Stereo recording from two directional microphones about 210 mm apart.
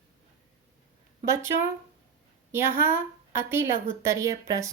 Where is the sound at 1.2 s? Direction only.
15° right (ahead or behind).